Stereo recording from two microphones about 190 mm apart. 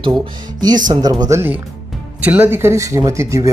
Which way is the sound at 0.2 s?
20° right (ahead or behind).